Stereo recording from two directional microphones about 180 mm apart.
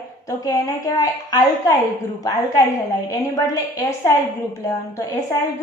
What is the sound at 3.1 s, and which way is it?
A woman's voice, 20° left (ahead or behind).